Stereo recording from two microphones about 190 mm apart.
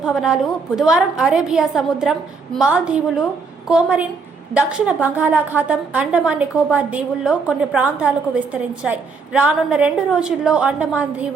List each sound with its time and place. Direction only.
0.0 s a woman's voice: centre (ahead or behind)